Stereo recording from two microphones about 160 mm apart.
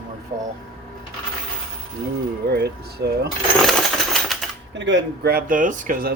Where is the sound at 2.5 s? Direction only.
90° right.